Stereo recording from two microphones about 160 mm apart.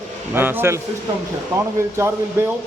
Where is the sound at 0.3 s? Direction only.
15° right (ahead or behind).